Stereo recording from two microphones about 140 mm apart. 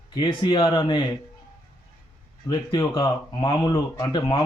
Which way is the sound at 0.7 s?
35° left (ahead or behind).